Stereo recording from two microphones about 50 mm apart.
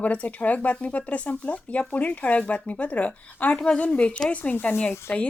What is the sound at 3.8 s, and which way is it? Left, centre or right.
Speech, left.